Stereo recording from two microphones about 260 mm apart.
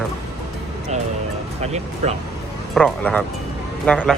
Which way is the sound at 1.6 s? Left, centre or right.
Right.